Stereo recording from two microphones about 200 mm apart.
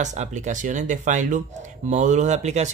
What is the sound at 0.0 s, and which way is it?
Speech, 35° right (ahead or behind).